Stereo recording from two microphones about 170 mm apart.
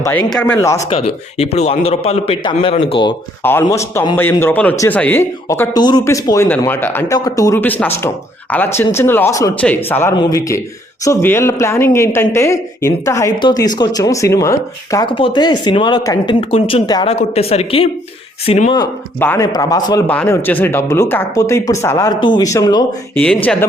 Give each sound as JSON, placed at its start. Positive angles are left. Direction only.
{"t": 0.0, "sound": "a woman's voice", "side_deg": 10}
{"t": 0.8, "sound": "speech", "side_deg": 35}
{"t": 3.4, "sound": "a woman's voice", "side_deg": 15}
{"t": 5.7, "sound": "a woman's voice", "side_deg": 25}
{"t": 10.2, "sound": "a woman's voice", "side_deg": 20}
{"t": 17.1, "sound": "speech", "side_deg": 35}
{"t": 19.2, "sound": "a woman's voice", "side_deg": 15}
{"t": 23.1, "sound": "a woman's voice", "side_deg": 10}